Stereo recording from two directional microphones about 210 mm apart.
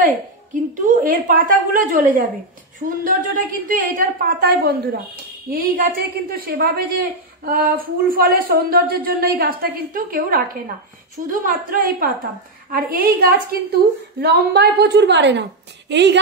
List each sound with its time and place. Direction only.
0.8 s a woman's voice: 40° right (ahead or behind); by 16.2 s 55° right (ahead or behind)